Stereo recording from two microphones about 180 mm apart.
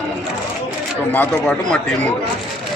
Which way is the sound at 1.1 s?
10° left (ahead or behind).